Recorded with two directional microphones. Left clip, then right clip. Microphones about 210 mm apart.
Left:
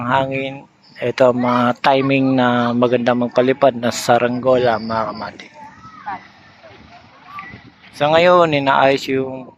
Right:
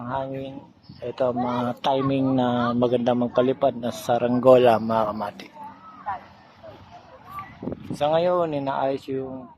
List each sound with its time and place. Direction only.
0.1 s speech: 15° left (ahead or behind)
4.4 s speech: 5° right (ahead or behind)
7.9 s speech: 10° left (ahead or behind)